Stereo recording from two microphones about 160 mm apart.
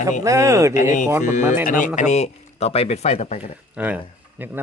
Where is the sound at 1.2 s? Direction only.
50° left (ahead or behind).